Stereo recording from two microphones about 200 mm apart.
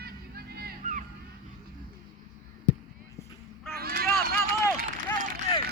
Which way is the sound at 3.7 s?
50° right (ahead or behind).